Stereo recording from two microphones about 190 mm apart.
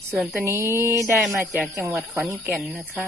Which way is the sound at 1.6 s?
5° right (ahead or behind).